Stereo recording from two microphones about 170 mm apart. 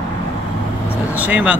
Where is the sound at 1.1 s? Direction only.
10° right (ahead or behind).